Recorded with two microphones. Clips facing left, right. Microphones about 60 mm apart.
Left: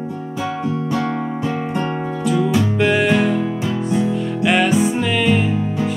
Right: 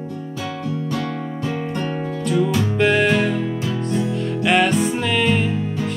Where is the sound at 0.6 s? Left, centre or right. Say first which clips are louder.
Left 3 dB; left.